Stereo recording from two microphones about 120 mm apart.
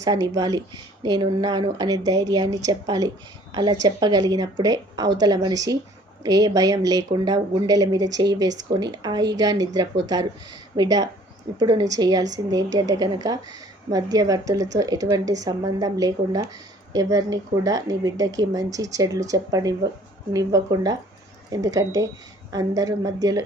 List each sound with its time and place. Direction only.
0.0 s a woman's voice: 30° right (ahead or behind)